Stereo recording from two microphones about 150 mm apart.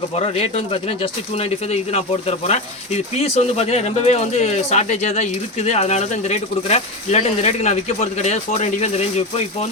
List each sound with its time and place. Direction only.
0.2 s speech: 40° left (ahead or behind)